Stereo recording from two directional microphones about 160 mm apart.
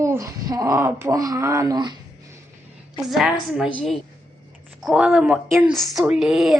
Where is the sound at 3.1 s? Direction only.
Centre (ahead or behind).